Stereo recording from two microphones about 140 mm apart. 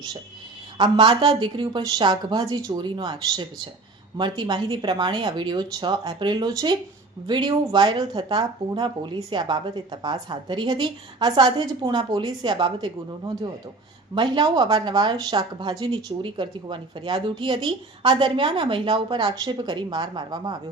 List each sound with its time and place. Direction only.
0.8 s speech: 35° right (ahead or behind)